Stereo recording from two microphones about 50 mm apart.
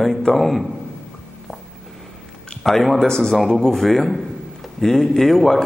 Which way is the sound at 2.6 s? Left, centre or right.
Centre.